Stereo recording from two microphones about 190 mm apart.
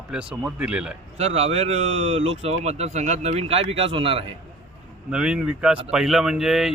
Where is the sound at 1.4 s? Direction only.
35° right (ahead or behind).